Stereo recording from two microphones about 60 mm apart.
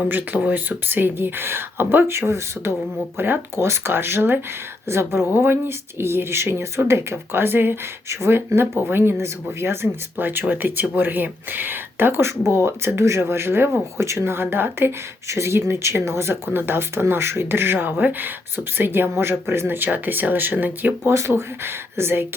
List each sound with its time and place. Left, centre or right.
0.1 s speech: right
15.3 s speech: right
21.0 s speech: right